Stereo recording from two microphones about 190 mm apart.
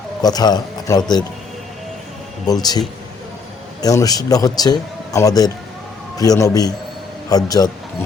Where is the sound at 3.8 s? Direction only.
20° left (ahead or behind).